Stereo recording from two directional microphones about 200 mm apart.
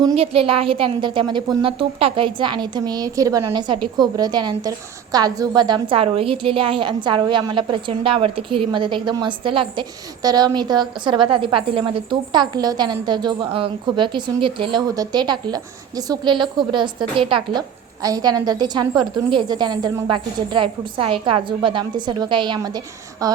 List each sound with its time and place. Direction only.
0.0 s a woman's voice: 25° right (ahead or behind)